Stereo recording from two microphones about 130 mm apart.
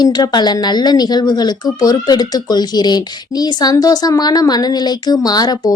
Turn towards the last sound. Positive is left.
turn(degrees=30)  # may be behind; listen again after turning